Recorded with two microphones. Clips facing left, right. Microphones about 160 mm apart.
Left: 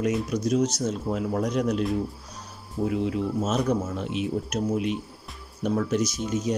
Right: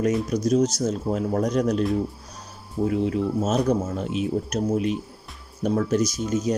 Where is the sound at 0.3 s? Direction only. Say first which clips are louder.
Right 3 dB; 40° right (ahead or behind).